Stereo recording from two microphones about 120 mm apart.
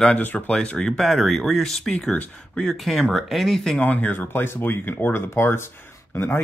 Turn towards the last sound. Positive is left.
turn(degrees=20)  # may be behind; listen again after turning